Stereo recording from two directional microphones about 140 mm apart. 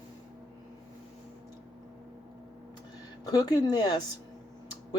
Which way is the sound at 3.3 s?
25° left (ahead or behind).